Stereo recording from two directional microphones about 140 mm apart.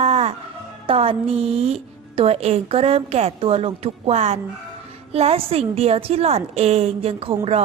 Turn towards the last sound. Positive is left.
turn(degrees=-45)  # may be behind; listen again after turning